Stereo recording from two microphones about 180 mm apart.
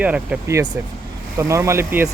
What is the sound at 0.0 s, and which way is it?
Speech, 10° right (ahead or behind).